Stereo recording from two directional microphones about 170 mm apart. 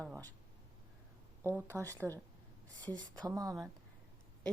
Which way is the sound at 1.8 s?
10° left (ahead or behind).